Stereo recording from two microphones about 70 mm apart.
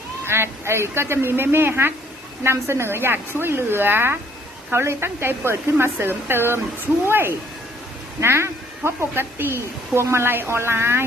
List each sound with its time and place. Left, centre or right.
0.3 s speech: right